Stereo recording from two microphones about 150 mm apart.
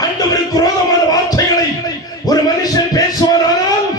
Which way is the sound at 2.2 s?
25° left (ahead or behind).